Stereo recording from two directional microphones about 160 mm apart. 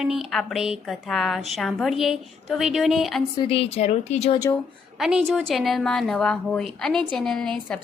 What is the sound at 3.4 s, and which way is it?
Speech, 35° left (ahead or behind).